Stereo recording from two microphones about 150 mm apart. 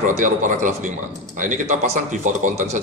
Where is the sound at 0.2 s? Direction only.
60° right (ahead or behind).